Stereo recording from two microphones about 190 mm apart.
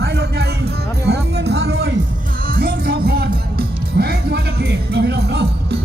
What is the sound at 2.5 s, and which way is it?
Music, 55° right (ahead or behind).